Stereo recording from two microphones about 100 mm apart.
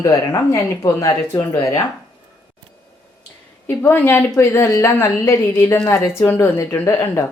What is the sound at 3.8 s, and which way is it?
A woman's voice, 25° left (ahead or behind).